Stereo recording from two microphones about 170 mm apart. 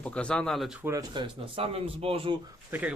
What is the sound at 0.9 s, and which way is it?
Speech, 25° right (ahead or behind).